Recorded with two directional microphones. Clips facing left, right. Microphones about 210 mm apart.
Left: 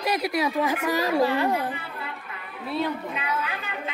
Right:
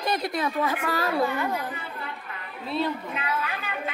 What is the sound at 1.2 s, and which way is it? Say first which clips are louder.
Speech: left 4 dB; 35° left (ahead or behind).